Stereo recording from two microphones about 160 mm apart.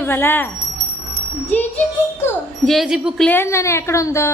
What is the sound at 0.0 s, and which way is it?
Speech, 15° left (ahead or behind).